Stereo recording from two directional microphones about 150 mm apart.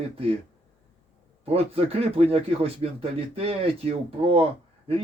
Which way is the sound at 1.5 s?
40° right (ahead or behind).